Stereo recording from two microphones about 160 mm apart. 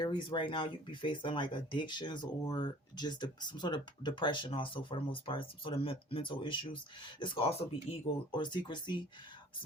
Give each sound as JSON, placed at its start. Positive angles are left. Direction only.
{"t": 0.0, "sound": "speech", "side_deg": 30}